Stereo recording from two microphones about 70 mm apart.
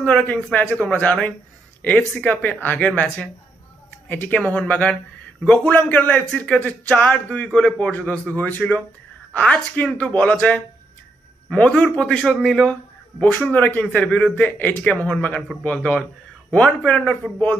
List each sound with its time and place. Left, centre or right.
0.3 s a man's voice: left